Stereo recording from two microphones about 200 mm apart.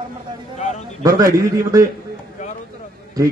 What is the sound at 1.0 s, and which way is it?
Speech, 15° right (ahead or behind).